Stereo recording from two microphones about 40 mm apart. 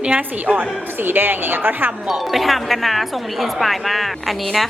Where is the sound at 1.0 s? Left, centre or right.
Right.